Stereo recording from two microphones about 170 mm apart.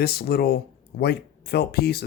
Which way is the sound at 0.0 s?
65° left (ahead or behind).